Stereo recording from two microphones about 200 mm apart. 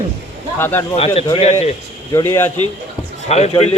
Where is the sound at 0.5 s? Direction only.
10° left (ahead or behind).